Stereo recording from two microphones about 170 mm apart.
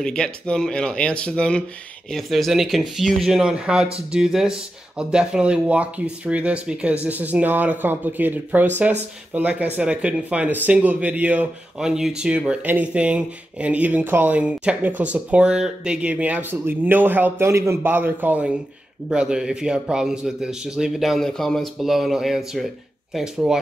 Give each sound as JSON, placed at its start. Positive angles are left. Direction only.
{"t": 0.0, "sound": "a man's voice", "side_deg": 5}